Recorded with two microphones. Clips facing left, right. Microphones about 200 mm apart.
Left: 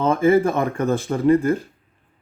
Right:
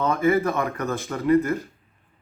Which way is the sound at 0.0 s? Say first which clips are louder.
Left 4 dB; 30° left (ahead or behind).